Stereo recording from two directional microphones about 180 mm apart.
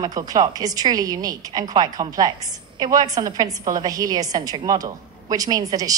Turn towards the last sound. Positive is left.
turn(degrees=-20)  # may be behind; listen again after turning